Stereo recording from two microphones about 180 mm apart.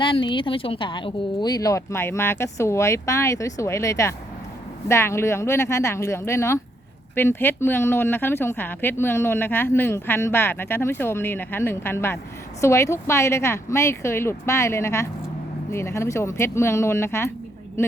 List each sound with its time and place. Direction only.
0.0 s speech: 30° left (ahead or behind)